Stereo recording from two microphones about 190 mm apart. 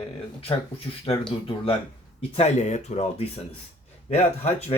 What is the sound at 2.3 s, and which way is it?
Speech, 35° left (ahead or behind).